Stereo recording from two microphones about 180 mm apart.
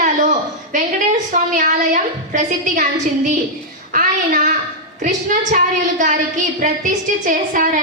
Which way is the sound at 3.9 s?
45° right (ahead or behind).